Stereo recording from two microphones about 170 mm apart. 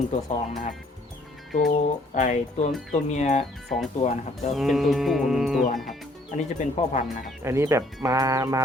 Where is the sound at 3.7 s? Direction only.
Centre (ahead or behind).